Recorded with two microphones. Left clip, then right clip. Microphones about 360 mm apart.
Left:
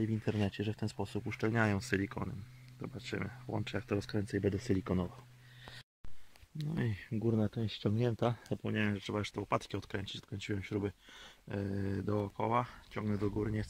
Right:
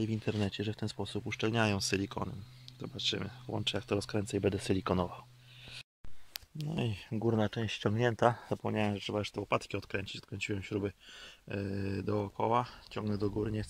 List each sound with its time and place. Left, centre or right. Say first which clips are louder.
0.0 s speech: right 1 dB; centre
4.6 s speech: right 4 dB; right
6.6 s speech: right 2 dB; centre
7.1 s speech: right 4 dB; right
8.6 s speech: right 2 dB; centre